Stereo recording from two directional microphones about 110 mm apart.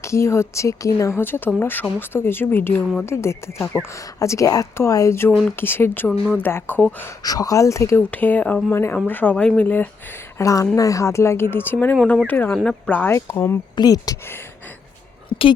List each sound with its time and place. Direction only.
0.0 s speech: 25° left (ahead or behind)
7.2 s speech: 35° left (ahead or behind)
8.1 s speech: 15° left (ahead or behind)
10.3 s speech: 30° left (ahead or behind)
13.1 s speech: 25° left (ahead or behind)
13.7 s speech: 35° left (ahead or behind)
15.3 s a sound: 50° left (ahead or behind)